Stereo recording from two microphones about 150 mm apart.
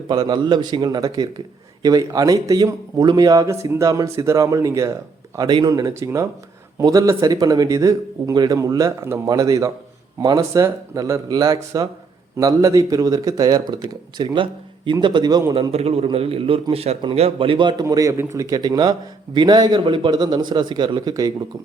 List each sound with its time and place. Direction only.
0.1 s a man's voice: 25° right (ahead or behind)
15.7 s a man's voice: 40° right (ahead or behind); by 21.3 s 25° right (ahead or behind)